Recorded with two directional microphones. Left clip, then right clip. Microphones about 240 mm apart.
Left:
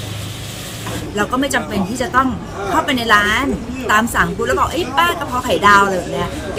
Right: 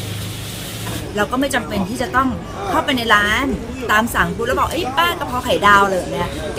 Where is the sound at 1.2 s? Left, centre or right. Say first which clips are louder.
Left 1 dB; centre.